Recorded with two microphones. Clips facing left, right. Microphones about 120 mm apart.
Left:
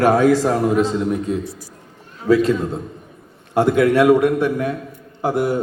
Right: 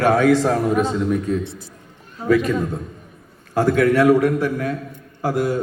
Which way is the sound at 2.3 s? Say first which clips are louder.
Left 2 dB; 30° left (ahead or behind).